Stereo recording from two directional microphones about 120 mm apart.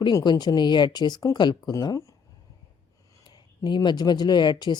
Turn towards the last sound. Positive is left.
turn(degrees=35)  # may be behind; listen again after turning